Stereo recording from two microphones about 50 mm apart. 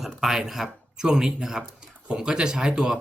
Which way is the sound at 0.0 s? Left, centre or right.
Centre.